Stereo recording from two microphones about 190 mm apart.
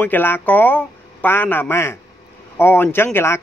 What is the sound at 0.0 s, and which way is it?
Speech, 10° left (ahead or behind).